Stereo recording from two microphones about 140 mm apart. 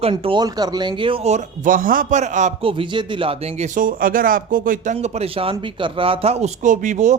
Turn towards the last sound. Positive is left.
turn(degrees=-60)  # may be behind; listen again after turning